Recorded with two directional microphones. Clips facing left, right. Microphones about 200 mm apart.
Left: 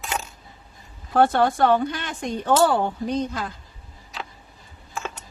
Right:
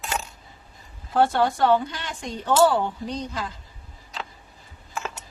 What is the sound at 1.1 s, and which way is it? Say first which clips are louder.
A woman's voice: left 2 dB; 55° left (ahead or behind).